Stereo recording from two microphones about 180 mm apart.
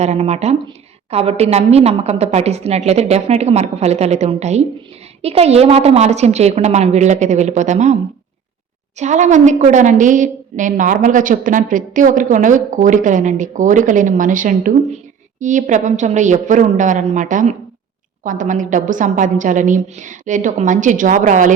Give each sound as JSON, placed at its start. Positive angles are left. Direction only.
{"t": 0.0, "sound": "a woman's voice", "side_deg": -35}
{"t": 9.0, "sound": "a woman's voice", "side_deg": -40}